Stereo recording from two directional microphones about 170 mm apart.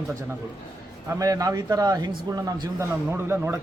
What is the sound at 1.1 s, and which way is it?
A man's voice, 20° right (ahead or behind).